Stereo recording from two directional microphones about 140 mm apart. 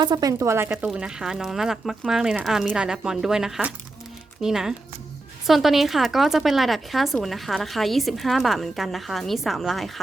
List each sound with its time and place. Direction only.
0.0 s speech: 30° right (ahead or behind)
0.7 s speech: 5° right (ahead or behind)